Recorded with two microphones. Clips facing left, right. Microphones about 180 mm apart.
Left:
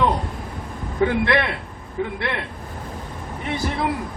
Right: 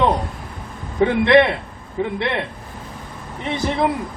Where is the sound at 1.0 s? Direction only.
20° right (ahead or behind).